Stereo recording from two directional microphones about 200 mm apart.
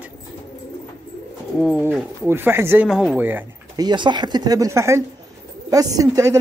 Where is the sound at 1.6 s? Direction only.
5° right (ahead or behind).